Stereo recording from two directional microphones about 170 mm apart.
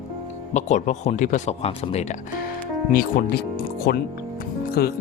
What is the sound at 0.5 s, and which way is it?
Speech, 45° left (ahead or behind).